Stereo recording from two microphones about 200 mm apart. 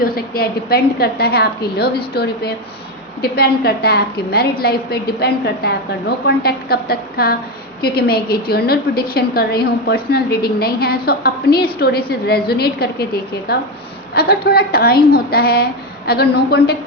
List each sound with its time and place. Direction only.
0.0 s a woman's voice: 50° left (ahead or behind)